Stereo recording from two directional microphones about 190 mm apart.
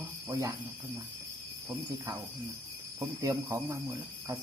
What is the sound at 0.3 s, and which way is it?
Speech, 15° right (ahead or behind).